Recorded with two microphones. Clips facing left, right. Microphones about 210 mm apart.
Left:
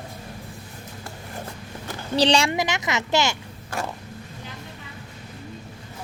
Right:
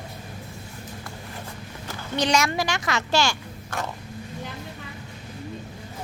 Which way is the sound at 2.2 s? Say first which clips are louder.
Left 3 dB; 30° left (ahead or behind).